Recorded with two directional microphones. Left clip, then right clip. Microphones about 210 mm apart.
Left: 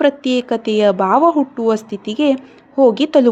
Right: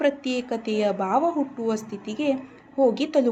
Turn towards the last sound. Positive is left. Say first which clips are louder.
# left 9 dB
turn(degrees=50)  # may be behind; listen again after turning